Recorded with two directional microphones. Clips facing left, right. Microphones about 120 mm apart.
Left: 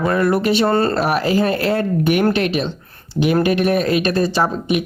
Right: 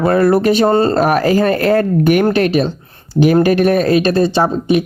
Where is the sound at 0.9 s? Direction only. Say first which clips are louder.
Right 5 dB; 45° right (ahead or behind).